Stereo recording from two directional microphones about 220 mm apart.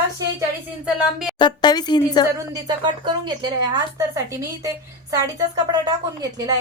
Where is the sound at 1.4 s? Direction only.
20° left (ahead or behind).